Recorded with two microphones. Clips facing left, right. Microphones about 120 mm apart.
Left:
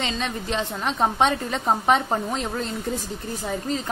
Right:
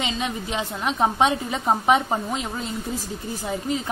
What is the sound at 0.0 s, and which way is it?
A woman's voice, 10° right (ahead or behind).